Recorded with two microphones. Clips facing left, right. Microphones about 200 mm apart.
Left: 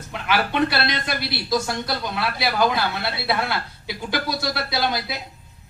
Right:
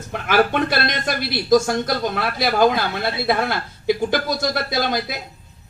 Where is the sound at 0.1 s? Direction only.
50° right (ahead or behind).